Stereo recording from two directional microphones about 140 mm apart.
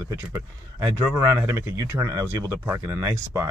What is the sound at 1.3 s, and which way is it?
Speech, 15° right (ahead or behind).